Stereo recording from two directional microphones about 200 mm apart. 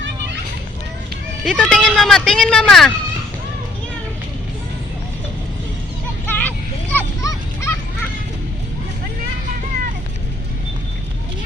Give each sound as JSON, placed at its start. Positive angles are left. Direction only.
{"t": 1.5, "sound": "speech", "side_deg": 5}
{"t": 6.2, "sound": "vehicle", "side_deg": 10}
{"t": 6.9, "sound": "children playing", "side_deg": 15}